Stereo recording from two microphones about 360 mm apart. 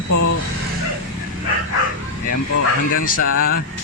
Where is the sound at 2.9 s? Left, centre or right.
Left.